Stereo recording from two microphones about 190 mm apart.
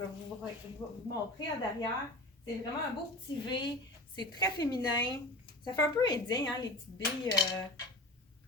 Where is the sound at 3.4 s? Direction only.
25° left (ahead or behind).